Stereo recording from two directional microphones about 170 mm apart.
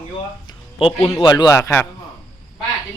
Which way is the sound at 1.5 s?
15° left (ahead or behind).